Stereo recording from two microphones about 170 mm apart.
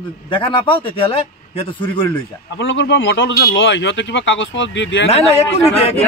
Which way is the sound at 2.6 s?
90° left.